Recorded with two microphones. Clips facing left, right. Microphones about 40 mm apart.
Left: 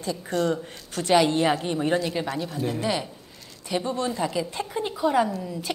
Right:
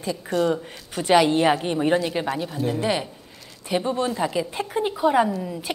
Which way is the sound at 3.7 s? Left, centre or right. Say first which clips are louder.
Right 3 dB; centre.